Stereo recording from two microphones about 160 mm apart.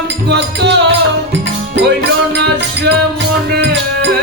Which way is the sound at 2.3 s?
90° right.